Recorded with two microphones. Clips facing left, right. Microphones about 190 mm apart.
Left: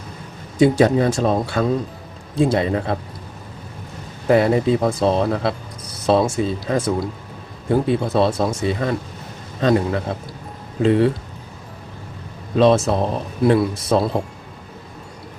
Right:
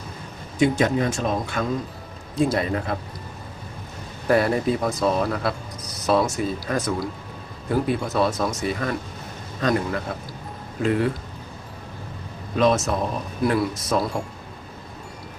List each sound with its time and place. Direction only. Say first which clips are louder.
0.6 s speech: left 5 dB; 35° left (ahead or behind)
4.3 s speech: left 4 dB; 20° left (ahead or behind)
12.5 s speech: left 5 dB; 30° left (ahead or behind)